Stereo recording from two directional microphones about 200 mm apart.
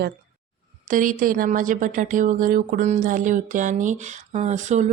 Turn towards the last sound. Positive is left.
turn(degrees=-35)  # may be behind; listen again after turning